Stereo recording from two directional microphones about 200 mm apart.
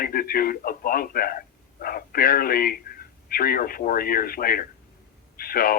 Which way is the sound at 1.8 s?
45° left (ahead or behind).